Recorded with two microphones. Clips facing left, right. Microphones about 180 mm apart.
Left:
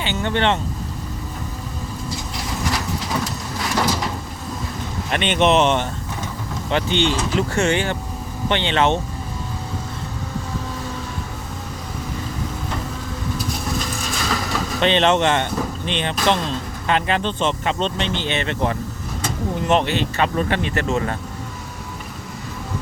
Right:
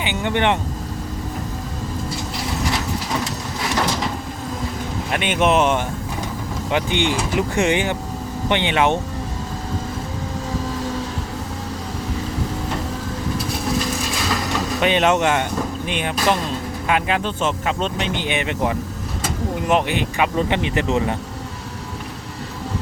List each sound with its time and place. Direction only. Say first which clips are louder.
0.0 s speech: right 1 dB; 15° right (ahead or behind)
5.1 s speech: left 1 dB; 10° right (ahead or behind)
14.8 s speech: left 1 dB; 10° right (ahead or behind)